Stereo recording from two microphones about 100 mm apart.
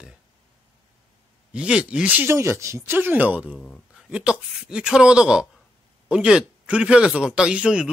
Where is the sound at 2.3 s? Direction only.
30° right (ahead or behind).